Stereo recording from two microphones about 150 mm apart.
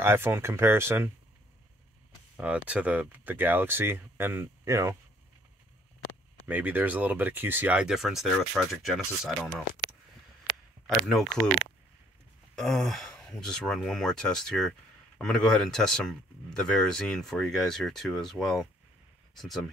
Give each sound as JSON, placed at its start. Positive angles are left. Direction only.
{"t": 0.0, "sound": "speech", "side_deg": -15}
{"t": 2.3, "sound": "speech", "side_deg": -10}
{"t": 6.4, "sound": "speech", "side_deg": -10}
{"t": 11.1, "sound": "speech", "side_deg": 0}